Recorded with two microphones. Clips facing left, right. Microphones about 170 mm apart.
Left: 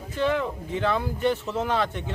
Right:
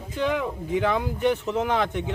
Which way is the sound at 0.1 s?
15° right (ahead or behind).